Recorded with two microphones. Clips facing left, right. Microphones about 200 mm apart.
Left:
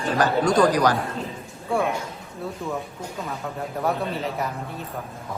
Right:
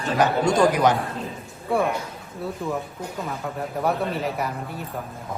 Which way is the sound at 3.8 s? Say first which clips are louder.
Right 1 dB; centre (ahead or behind).